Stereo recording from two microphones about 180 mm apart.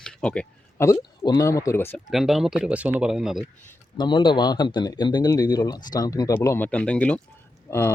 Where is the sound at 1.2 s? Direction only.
20° left (ahead or behind).